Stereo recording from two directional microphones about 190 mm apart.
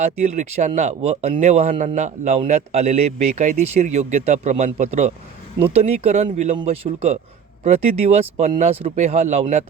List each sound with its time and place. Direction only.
0.0 s speech: 35° right (ahead or behind)